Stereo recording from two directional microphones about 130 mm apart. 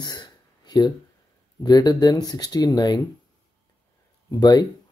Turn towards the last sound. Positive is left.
turn(degrees=30)  # may be behind; listen again after turning